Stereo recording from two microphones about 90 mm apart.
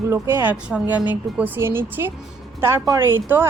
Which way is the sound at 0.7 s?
15° right (ahead or behind).